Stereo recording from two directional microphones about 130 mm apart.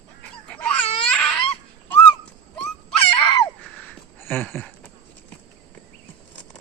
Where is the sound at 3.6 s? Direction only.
10° left (ahead or behind).